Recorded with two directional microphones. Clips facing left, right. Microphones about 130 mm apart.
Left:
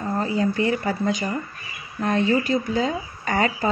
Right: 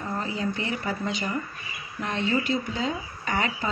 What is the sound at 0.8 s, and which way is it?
A woman's voice, 40° left (ahead or behind).